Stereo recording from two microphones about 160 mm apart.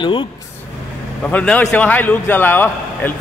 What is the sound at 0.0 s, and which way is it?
Speech, 30° left (ahead or behind).